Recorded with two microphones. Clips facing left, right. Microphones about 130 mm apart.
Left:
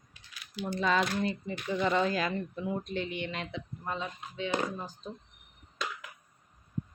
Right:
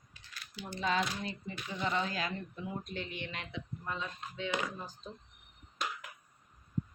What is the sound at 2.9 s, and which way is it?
Speech, 25° left (ahead or behind).